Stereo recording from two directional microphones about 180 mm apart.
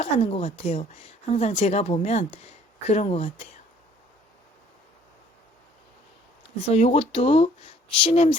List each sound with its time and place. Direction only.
0.0 s speech: 35° left (ahead or behind)
6.7 s speech: 35° left (ahead or behind)